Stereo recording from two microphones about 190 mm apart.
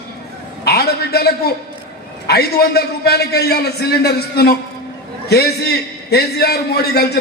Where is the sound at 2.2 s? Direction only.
55° left (ahead or behind).